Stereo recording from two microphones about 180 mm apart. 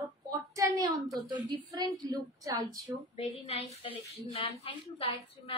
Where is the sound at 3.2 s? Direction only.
35° left (ahead or behind).